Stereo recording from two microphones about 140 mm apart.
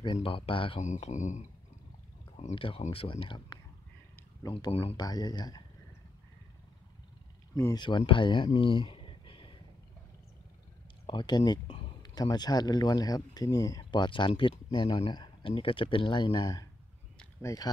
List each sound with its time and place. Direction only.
0.0 s speech: 35° left (ahead or behind)
0.8 s speech: 55° left (ahead or behind)
2.3 s speech: 45° left (ahead or behind)
4.4 s speech: 25° left (ahead or behind)
4.6 s speech: 45° left (ahead or behind)
4.9 s speech: 30° left (ahead or behind)
7.7 s speech: 35° left (ahead or behind)
8.5 s a sound: 35° left (ahead or behind)
11.1 s speech: 35° left (ahead or behind)